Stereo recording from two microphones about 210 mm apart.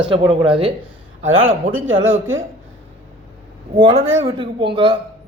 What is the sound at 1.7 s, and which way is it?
Speech, 75° right (ahead or behind).